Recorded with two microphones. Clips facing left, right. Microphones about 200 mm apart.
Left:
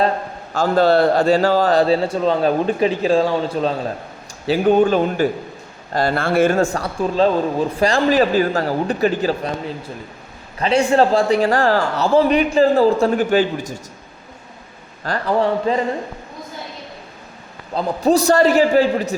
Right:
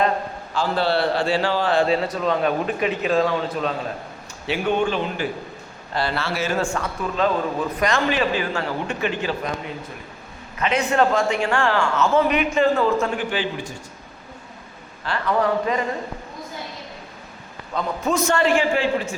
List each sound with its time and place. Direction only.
0.5 s a man's voice: 45° left (ahead or behind)
6.7 s a man's voice: 35° left (ahead or behind)
15.0 s a man's voice: 35° left (ahead or behind)
17.7 s a man's voice: 35° left (ahead or behind)